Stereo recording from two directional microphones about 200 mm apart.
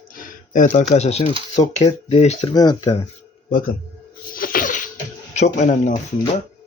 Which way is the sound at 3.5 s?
45° left (ahead or behind).